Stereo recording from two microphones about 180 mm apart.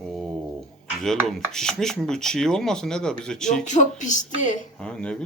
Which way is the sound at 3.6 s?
45° left (ahead or behind).